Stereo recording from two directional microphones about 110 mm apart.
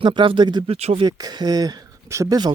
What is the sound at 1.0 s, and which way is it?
Speech, 35° right (ahead or behind).